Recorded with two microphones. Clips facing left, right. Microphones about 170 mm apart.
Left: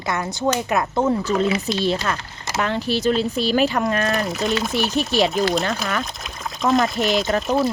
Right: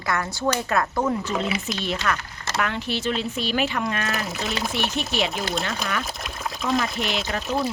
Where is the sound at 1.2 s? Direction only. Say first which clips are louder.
Left 6 dB; 35° left (ahead or behind).